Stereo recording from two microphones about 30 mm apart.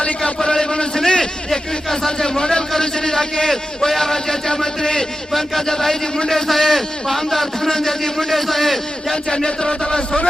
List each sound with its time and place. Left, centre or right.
0.4 s a sound: left
2.0 s a man's voice: left
5.3 s a man's voice: centre
7.7 s a man's voice: centre
8.3 s a man's voice: centre
9.3 s a sound: left